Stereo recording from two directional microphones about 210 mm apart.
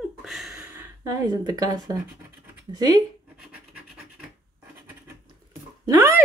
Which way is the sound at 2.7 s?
20° right (ahead or behind).